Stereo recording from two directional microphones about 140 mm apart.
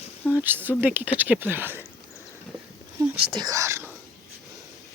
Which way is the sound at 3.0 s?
25° right (ahead or behind).